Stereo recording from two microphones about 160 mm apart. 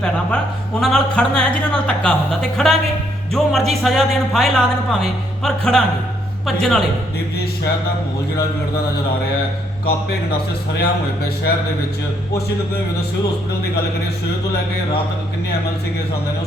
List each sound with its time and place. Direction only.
0.0 s speech: 5° left (ahead or behind)
10.8 s speech: 80° left